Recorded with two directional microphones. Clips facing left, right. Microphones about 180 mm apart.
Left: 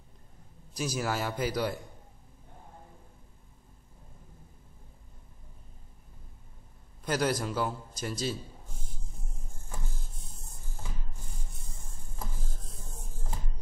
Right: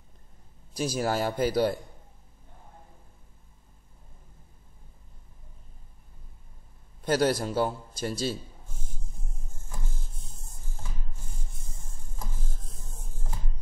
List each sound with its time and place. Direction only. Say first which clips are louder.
0.7 s a man's voice: right 4 dB; 30° right (ahead or behind)
7.1 s a man's voice: right 4 dB; 30° right (ahead or behind)
12.4 s a sound: even; 45° left (ahead or behind)